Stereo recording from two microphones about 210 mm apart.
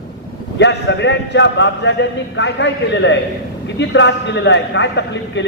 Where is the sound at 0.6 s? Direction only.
60° left (ahead or behind).